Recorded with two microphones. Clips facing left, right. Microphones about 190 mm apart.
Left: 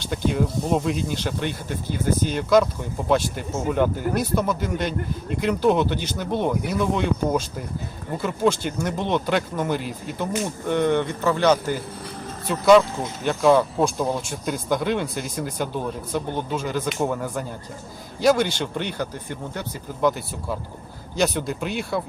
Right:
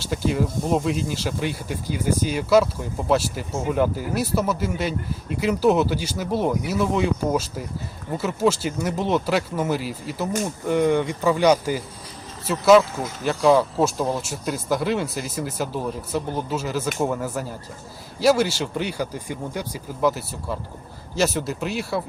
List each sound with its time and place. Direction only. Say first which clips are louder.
0.0 s speech: even; 5° right (ahead or behind)